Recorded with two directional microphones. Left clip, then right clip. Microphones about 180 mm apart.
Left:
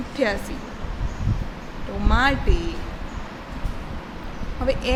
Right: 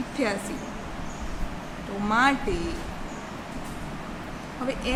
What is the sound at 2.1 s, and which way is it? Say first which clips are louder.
Speech: left 1 dB; 10° left (ahead or behind).